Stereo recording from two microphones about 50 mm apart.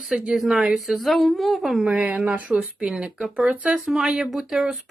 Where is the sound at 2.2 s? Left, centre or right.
Right.